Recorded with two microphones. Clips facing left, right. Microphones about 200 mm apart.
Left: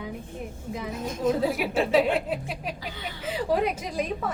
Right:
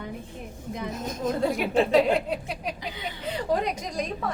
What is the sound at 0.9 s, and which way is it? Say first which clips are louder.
Speech: left 1 dB; 40° right (ahead or behind).